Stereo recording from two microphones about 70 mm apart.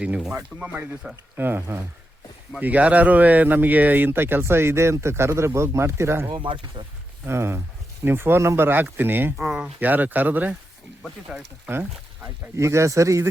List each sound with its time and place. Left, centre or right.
0.0 s speech: centre
1.4 s speech: right
2.6 s speech: right
6.8 s speech: right
7.3 s speech: right
9.4 s speech: centre
9.8 s speech: right
11.3 s speech: centre
11.7 s speech: right
12.5 s speech: right